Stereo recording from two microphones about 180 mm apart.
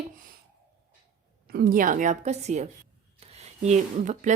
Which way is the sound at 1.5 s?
55° right (ahead or behind).